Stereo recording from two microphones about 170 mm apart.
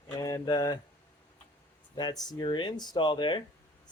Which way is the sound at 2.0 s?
25° left (ahead or behind).